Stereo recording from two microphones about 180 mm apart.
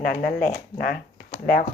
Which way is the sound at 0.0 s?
55° left (ahead or behind).